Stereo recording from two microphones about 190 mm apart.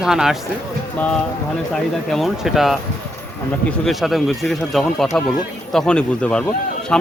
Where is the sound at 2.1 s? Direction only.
Centre (ahead or behind).